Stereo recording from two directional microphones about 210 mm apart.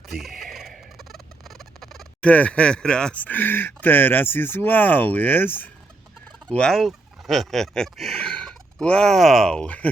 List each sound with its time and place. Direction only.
0.1 s fowl: centre (ahead or behind)
6.4 s speech: 5° left (ahead or behind)